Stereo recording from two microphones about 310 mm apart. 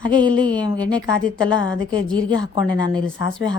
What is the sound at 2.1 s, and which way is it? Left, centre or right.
Speech, centre.